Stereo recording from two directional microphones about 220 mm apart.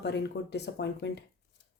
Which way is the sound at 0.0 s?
50° left (ahead or behind).